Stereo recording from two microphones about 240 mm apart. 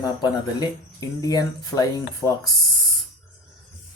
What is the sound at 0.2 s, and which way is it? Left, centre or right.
Speech, centre.